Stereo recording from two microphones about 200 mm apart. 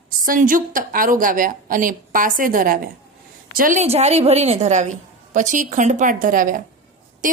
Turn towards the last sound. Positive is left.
turn(degrees=-40)  # may be behind; listen again after turning